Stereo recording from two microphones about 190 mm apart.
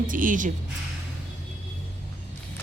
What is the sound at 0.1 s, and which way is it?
Speech, 45° right (ahead or behind).